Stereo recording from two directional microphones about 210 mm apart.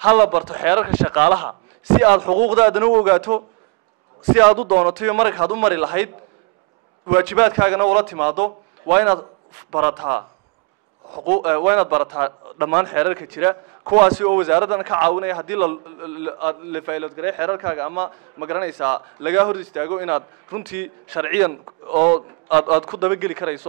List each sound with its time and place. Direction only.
0.0 s a man's voice: 10° right (ahead or behind)
4.6 s a man's voice: 10° right (ahead or behind)
7.1 s a man's voice: 5° right (ahead or behind)
11.2 s a man's voice: 10° right (ahead or behind)